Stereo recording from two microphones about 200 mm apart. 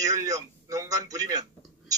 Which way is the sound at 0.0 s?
15° right (ahead or behind).